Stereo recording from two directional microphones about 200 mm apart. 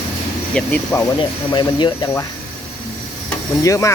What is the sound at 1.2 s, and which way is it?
Speech, 25° left (ahead or behind).